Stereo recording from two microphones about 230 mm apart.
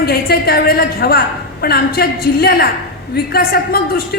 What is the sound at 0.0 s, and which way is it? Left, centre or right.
A woman's voice, left.